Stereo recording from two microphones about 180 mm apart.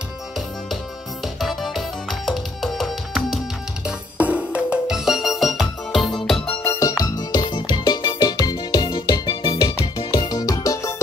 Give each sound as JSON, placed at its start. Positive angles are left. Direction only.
{"t": 1.4, "sound": "music", "side_deg": 0}